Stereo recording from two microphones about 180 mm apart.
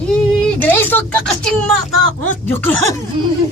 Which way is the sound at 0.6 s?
10° left (ahead or behind).